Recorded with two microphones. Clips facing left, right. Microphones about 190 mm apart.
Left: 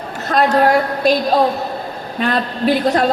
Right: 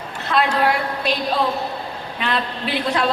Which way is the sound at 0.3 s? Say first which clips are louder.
Left 5 dB; 45° left (ahead or behind).